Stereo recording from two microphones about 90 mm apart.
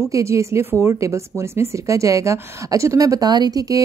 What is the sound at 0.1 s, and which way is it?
A woman's voice, 35° right (ahead or behind).